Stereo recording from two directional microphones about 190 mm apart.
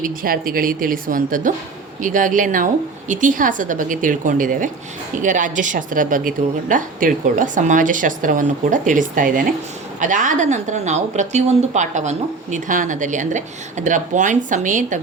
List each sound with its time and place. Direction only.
0.0 s a woman's voice: 50° right (ahead or behind)